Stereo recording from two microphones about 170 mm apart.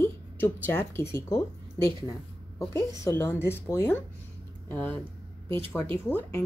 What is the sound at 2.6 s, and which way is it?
A woman's voice, 15° left (ahead or behind).